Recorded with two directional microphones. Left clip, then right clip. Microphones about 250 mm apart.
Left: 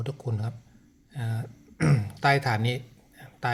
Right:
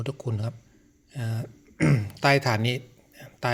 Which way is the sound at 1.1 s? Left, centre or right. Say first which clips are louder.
Right 1 dB; right.